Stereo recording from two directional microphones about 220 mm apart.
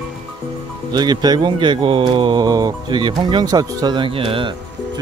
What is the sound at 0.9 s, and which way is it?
Speech, 20° right (ahead or behind).